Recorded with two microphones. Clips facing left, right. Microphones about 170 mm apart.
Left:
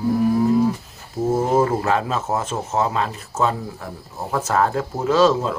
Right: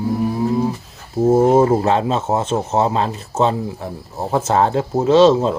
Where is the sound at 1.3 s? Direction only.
30° right (ahead or behind).